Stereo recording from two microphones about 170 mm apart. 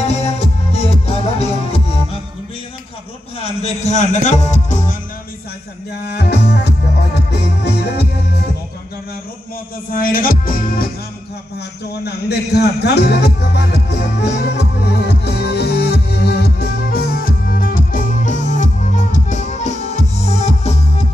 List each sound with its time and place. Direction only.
0.0 s music: 40° left (ahead or behind)
3.3 s speech: 40° left (ahead or behind)
6.0 s music: 75° left (ahead or behind)
9.9 s music: 55° left (ahead or behind)
12.0 s music: 75° left (ahead or behind); by 20.7 s 40° left (ahead or behind)